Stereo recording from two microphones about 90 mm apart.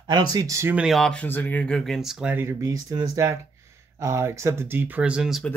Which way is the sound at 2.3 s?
30° right (ahead or behind).